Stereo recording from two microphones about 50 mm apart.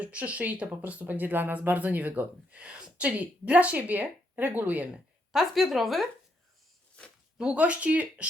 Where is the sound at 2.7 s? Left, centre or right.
Right.